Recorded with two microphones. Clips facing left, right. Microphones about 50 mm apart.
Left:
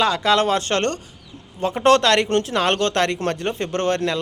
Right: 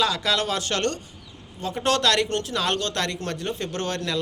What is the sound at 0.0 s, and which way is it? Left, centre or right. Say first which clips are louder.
Speech: left 6 dB; left.